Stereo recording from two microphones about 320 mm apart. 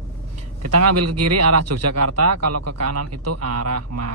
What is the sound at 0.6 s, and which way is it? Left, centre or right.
A man's voice, right.